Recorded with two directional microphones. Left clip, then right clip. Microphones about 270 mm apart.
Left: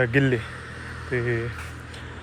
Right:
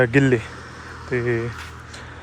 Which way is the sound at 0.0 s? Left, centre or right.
Centre.